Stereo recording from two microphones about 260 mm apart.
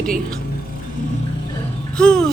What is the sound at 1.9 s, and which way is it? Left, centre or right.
Music, centre.